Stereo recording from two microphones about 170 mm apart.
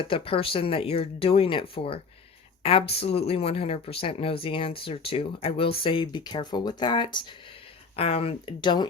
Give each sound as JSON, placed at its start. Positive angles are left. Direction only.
{"t": 0.0, "sound": "speech", "side_deg": 30}